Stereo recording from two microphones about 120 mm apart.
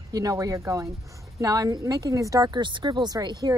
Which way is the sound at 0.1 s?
30° right (ahead or behind).